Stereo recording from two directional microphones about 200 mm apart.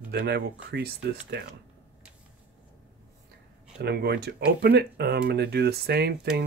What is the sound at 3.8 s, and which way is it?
Speech, 55° right (ahead or behind).